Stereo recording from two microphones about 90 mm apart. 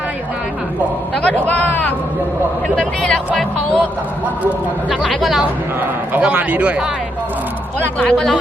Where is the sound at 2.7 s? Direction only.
10° left (ahead or behind).